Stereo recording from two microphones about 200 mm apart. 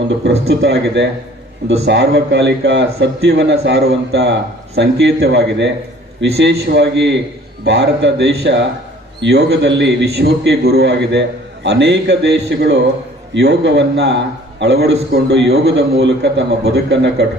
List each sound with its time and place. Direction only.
0.3 s a man's voice: 55° right (ahead or behind)